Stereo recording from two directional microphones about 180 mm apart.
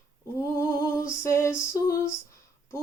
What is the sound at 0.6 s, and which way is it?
Female singing, 15° left (ahead or behind).